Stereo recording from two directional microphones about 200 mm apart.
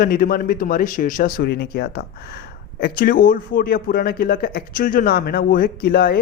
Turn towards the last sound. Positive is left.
turn(degrees=50)  # may be behind; listen again after turning